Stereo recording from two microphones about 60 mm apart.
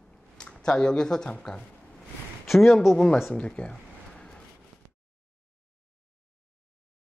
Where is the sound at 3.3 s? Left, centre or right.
Left.